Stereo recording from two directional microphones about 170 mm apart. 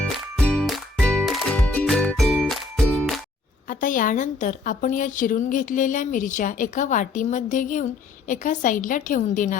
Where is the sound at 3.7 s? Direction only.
50° left (ahead or behind).